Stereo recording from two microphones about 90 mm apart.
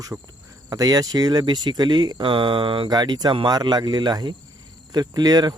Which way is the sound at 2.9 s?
50° right (ahead or behind).